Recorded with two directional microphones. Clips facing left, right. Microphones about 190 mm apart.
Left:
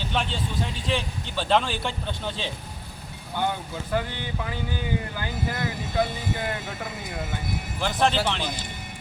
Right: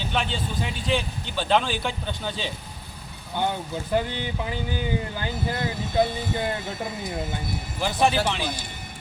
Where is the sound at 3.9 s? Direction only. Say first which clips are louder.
Right 3 dB; 20° right (ahead or behind).